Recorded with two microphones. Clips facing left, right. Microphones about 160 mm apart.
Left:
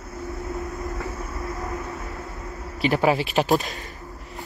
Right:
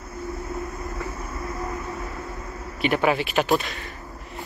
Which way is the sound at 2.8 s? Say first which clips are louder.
Left 1 dB; 30° left (ahead or behind).